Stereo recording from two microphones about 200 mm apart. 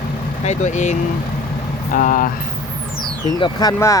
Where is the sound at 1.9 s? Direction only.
40° left (ahead or behind).